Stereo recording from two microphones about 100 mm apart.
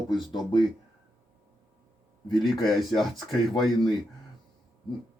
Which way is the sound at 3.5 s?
50° left (ahead or behind).